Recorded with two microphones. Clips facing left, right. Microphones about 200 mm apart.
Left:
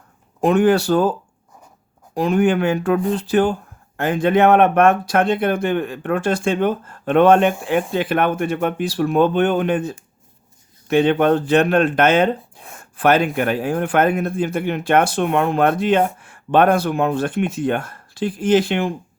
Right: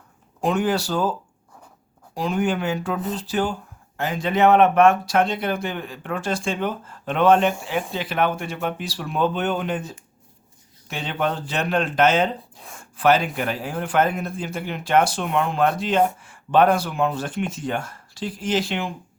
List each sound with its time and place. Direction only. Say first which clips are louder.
0.4 s a man's voice: left 7 dB; 55° left (ahead or behind)
2.1 s a man's voice: left 6 dB; 55° left (ahead or behind)